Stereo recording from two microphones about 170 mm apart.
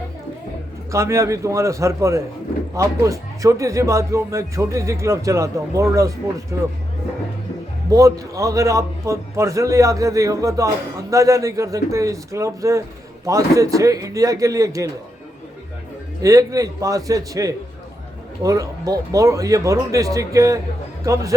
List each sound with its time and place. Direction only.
0.9 s speech: 15° right (ahead or behind)
7.9 s a man's voice: 20° right (ahead or behind)
16.2 s a man's voice: 20° right (ahead or behind)